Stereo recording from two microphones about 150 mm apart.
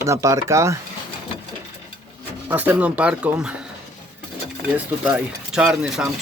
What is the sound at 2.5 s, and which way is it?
Speech, 10° right (ahead or behind).